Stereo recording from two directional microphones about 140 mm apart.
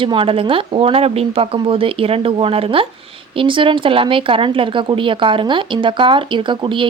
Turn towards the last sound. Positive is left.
turn(degrees=-35)  # may be behind; listen again after turning